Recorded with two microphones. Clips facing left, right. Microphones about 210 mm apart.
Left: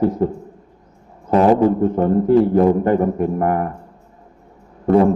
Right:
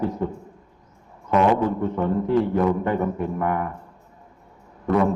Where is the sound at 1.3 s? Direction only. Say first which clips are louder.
Left 6 dB; 35° left (ahead or behind).